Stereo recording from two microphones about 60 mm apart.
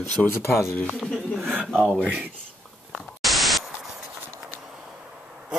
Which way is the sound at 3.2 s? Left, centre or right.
Centre.